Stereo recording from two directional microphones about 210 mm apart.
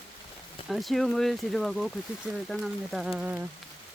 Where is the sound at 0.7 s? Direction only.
Centre (ahead or behind).